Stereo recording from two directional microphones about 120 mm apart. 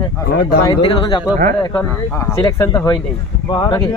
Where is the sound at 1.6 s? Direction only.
35° left (ahead or behind).